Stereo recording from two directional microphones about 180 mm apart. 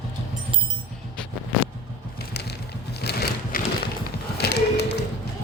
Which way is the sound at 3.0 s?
65° left (ahead or behind).